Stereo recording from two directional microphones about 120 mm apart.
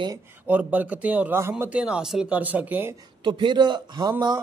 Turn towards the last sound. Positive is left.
turn(degrees=-40)  # may be behind; listen again after turning